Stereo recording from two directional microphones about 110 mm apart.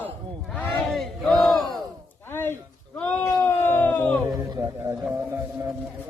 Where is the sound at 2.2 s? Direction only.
20° left (ahead or behind).